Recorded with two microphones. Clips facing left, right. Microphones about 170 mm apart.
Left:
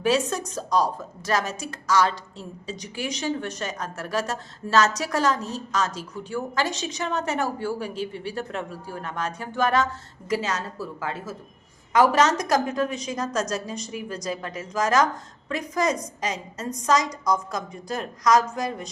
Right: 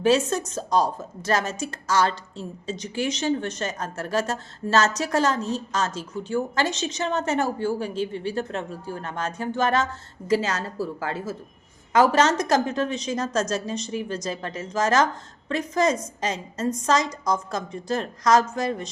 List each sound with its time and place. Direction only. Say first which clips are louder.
0.0 s a woman's voice: right 3 dB; 25° right (ahead or behind)